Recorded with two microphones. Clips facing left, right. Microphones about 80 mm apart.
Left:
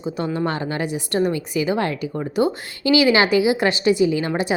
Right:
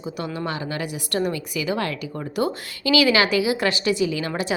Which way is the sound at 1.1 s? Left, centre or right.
Left.